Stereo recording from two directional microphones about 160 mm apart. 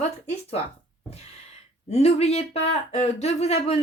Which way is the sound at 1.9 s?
40° left (ahead or behind).